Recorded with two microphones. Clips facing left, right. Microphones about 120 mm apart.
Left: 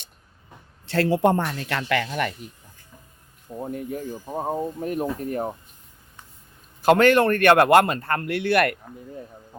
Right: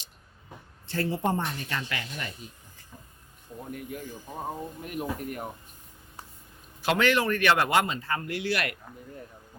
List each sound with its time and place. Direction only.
0.9 s speech: 90° left; by 2.5 s 70° left (ahead or behind)
3.6 s speech: 30° left (ahead or behind)
6.8 s a man's voice: 50° left (ahead or behind)